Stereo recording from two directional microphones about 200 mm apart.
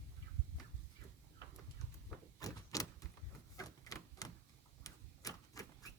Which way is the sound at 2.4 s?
15° left (ahead or behind).